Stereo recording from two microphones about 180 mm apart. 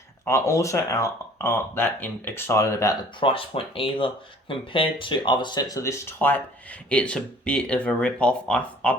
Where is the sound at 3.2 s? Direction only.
30° left (ahead or behind).